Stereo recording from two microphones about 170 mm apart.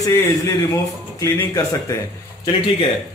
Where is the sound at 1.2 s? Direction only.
20° left (ahead or behind).